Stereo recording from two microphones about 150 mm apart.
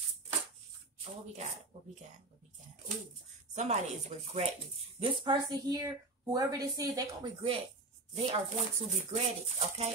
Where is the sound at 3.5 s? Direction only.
50° right (ahead or behind).